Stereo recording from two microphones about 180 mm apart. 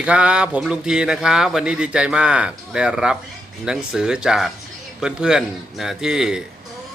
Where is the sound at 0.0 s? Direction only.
5° right (ahead or behind).